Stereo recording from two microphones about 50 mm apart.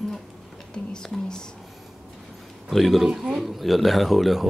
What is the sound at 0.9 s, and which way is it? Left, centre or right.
Speech, centre.